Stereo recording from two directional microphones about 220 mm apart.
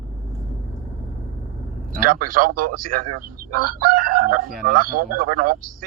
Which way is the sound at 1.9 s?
40° right (ahead or behind).